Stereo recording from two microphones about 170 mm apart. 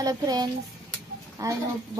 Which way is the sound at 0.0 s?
20° right (ahead or behind).